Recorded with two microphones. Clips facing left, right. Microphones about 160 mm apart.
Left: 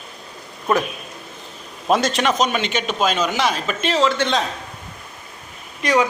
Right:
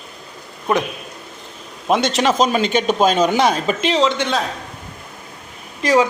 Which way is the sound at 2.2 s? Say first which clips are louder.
Right 3 dB; 30° right (ahead or behind).